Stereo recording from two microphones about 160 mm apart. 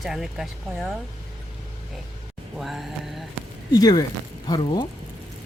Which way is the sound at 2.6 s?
Centre (ahead or behind).